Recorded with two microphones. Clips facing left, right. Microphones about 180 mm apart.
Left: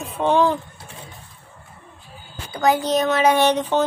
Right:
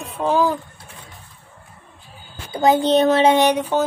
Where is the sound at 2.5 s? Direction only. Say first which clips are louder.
Right 3 dB; 25° right (ahead or behind).